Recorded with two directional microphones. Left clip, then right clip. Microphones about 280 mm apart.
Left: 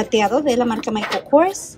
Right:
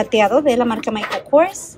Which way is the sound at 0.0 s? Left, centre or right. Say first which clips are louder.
Right 3 dB; centre.